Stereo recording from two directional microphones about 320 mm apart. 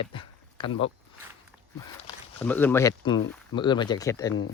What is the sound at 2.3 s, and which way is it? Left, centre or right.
Speech, centre.